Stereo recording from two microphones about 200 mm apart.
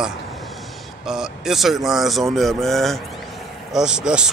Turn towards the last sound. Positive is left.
turn(degrees=-5)  # may be behind; listen again after turning